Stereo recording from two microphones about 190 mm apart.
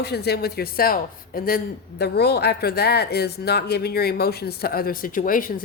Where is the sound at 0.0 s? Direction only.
60° left (ahead or behind).